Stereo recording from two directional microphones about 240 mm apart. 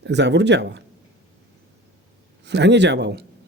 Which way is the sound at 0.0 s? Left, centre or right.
Right.